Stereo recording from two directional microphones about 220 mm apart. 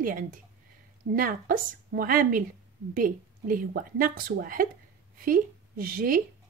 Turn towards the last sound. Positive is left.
turn(degrees=-40)  # may be behind; listen again after turning